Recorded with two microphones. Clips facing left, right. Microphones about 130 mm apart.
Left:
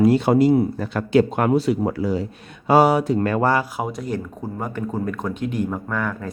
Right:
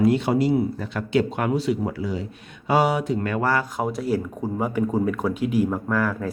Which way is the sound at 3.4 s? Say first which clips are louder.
Left 2 dB; 20° left (ahead or behind).